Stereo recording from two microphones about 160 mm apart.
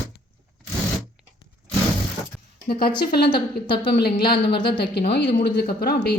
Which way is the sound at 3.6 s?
30° left (ahead or behind).